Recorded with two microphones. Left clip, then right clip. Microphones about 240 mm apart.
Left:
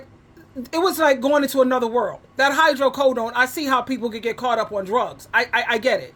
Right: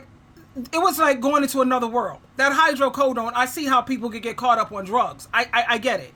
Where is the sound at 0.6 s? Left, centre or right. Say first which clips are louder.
Even; centre.